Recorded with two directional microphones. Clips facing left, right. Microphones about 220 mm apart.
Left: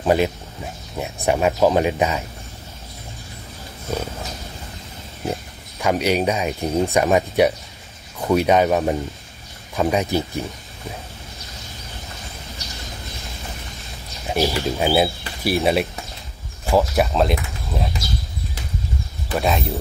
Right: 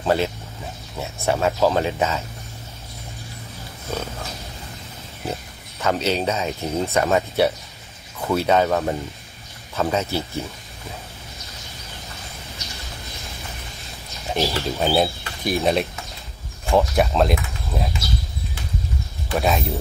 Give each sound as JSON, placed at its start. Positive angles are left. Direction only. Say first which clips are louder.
{"t": 0.0, "sound": "speech", "louder": "left 3 dB", "side_deg": 15}
{"t": 5.2, "sound": "speech", "louder": "left 3 dB", "side_deg": 15}
{"t": 14.3, "sound": "speech", "louder": "left 2 dB", "side_deg": 10}
{"t": 19.3, "sound": "speech", "louder": "even", "side_deg": 0}